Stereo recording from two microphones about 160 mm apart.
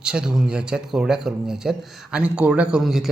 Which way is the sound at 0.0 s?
5° right (ahead or behind).